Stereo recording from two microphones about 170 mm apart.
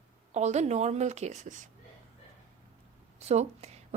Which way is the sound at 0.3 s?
40° right (ahead or behind).